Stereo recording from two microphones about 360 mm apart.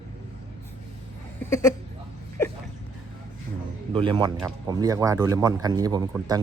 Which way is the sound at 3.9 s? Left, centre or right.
Centre.